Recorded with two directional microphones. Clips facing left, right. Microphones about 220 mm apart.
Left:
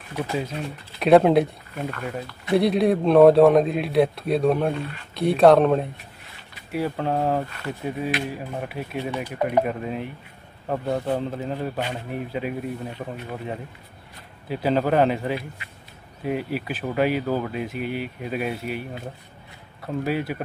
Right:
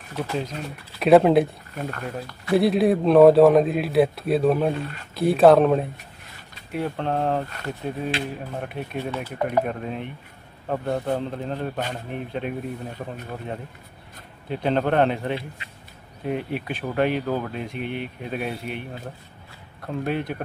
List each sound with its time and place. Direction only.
0.2 s a man's voice: 5° left (ahead or behind)
7.4 s speech: 40° right (ahead or behind)
8.5 s a man's voice: 5° left (ahead or behind)
9.1 s a man's voice: 15° left (ahead or behind)